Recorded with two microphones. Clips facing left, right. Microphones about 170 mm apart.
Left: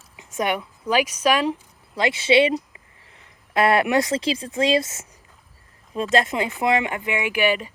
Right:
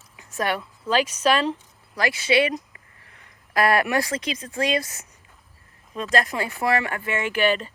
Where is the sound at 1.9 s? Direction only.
25° left (ahead or behind).